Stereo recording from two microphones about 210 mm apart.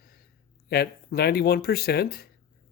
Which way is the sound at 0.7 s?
50° left (ahead or behind).